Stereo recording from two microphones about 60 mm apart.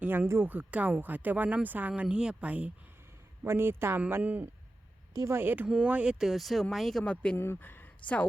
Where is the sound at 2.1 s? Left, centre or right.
Centre.